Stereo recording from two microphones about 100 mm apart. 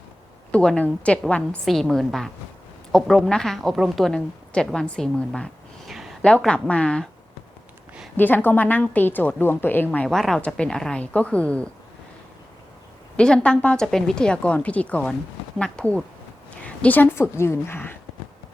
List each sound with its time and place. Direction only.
0.5 s a woman's voice: 10° left (ahead or behind)
8.1 s a woman's voice: 20° left (ahead or behind)
10.1 s a woman's voice: 5° left (ahead or behind)
13.1 s a woman's voice: 10° left (ahead or behind)